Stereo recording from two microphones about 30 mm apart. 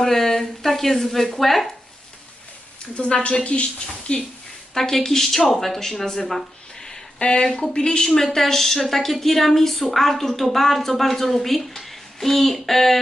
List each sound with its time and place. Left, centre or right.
0.0 s speech: centre
2.9 s a woman's voice: left
4.7 s speech: centre
7.2 s a woman's voice: left
7.4 s speech: centre
7.8 s speech: left
8.0 s speech: centre